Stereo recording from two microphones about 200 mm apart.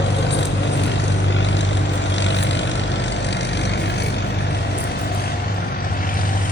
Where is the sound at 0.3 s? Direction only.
60° left (ahead or behind).